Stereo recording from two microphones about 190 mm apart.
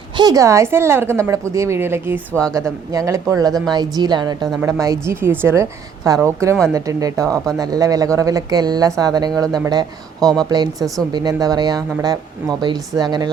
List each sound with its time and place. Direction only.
0.2 s a woman's voice: 20° right (ahead or behind)